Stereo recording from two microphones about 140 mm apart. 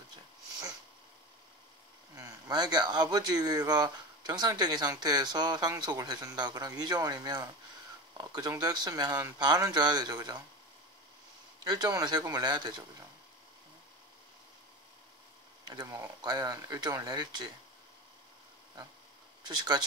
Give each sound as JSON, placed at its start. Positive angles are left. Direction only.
{"t": 2.1, "sound": "speech", "side_deg": -25}
{"t": 11.6, "sound": "speech", "side_deg": -30}
{"t": 15.7, "sound": "speech", "side_deg": -30}
{"t": 19.4, "sound": "speech", "side_deg": -30}